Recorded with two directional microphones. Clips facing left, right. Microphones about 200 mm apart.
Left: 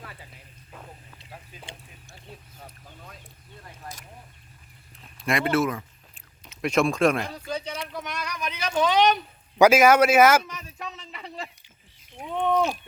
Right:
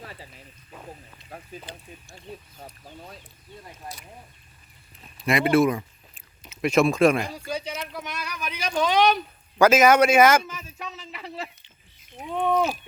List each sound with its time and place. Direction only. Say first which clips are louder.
0.0 s snake: right 3 dB; 35° right (ahead or behind)
1.2 s a sound: right 3 dB; 30° left (ahead or behind)
5.1 s speech: right 3 dB; centre (ahead or behind)
5.5 s speech: right 6 dB; 15° right (ahead or behind)
6.4 s a man's voice: right 3 dB; 5° right (ahead or behind)
9.6 s a man's voice: even; 10° left (ahead or behind)